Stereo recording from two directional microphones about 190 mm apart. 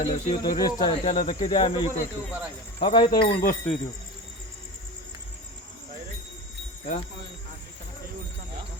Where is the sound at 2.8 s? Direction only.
25° left (ahead or behind).